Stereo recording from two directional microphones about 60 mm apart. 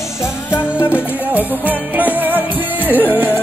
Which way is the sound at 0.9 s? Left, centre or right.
Right.